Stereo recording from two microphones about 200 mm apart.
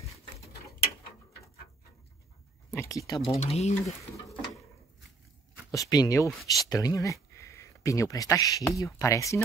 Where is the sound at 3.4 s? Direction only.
35° left (ahead or behind).